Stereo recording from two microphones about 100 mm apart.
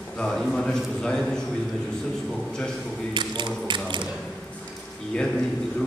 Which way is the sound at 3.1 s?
50° right (ahead or behind).